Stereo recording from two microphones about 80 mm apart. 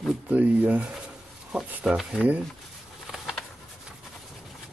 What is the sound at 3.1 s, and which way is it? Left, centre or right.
Bird, centre.